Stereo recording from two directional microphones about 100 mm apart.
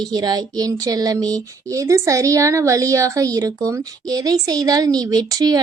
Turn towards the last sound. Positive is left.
turn(degrees=-40)  # may be behind; listen again after turning